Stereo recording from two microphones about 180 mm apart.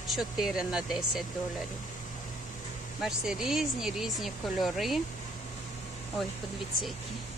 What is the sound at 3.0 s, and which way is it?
Speech, 5° right (ahead or behind).